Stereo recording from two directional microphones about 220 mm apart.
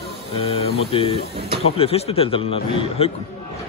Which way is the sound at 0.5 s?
25° left (ahead or behind).